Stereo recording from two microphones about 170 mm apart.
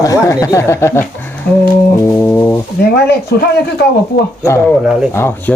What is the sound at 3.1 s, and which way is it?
Speech, 70° left (ahead or behind).